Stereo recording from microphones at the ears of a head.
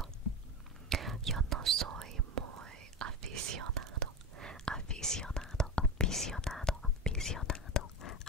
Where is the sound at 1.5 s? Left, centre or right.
Right.